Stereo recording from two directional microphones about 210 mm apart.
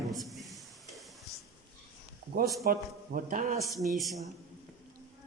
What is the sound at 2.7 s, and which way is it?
Speech, 45° right (ahead or behind).